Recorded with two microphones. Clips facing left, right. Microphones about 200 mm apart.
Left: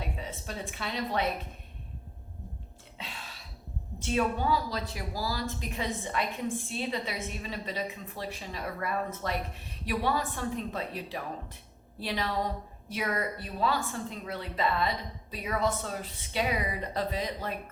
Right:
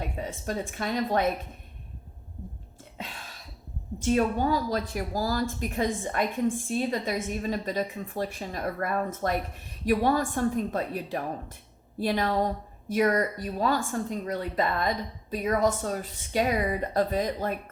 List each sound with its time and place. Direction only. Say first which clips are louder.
0.0 s speech: right 5 dB; 45° right (ahead or behind)
4.0 s a woman's voice: right 5 dB; 45° right (ahead or behind)